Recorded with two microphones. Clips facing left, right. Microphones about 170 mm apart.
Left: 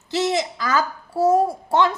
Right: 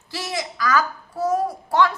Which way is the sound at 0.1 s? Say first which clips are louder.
Left 8 dB; 25° left (ahead or behind).